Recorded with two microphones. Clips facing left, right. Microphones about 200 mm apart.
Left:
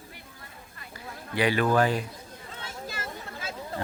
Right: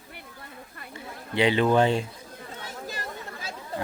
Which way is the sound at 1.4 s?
20° right (ahead or behind).